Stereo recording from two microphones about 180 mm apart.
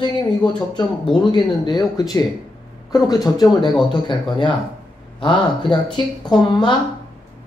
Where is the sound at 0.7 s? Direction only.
25° left (ahead or behind).